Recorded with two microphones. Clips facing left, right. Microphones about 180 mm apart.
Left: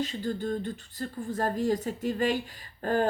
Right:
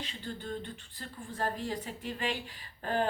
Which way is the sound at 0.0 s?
40° left (ahead or behind).